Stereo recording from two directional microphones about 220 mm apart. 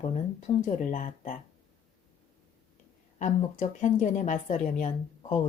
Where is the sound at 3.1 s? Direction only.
35° left (ahead or behind).